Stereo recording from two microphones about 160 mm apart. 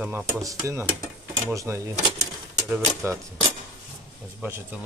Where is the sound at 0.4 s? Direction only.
20° right (ahead or behind).